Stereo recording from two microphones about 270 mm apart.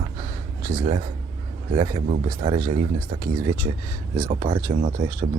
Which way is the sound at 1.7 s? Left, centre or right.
Centre.